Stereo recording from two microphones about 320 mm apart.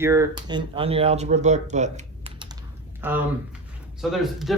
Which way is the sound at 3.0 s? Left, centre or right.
Centre.